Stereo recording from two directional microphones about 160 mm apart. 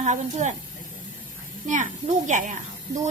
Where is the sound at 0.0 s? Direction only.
50° right (ahead or behind).